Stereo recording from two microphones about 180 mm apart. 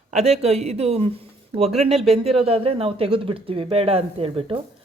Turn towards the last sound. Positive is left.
turn(degrees=-30)  # may be behind; listen again after turning